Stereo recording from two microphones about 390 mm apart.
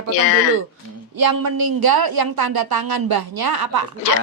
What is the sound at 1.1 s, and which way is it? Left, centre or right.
Speech, right.